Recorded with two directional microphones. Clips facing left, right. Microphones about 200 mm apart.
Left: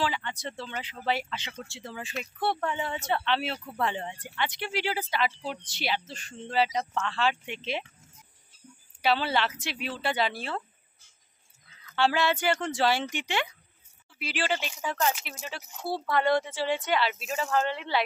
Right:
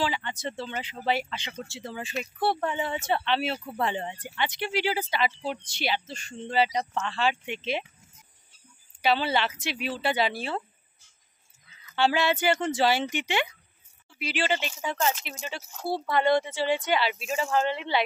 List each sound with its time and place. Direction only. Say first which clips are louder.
0.0 s speech: right 2 dB; centre (ahead or behind)
3.5 s speech: right 4 dB; 25° right (ahead or behind)
3.8 s speech: right 1 dB; 5° right (ahead or behind)
9.0 s speech: right 1 dB; centre (ahead or behind)
11.8 s speech: right 1 dB; 5° right (ahead or behind)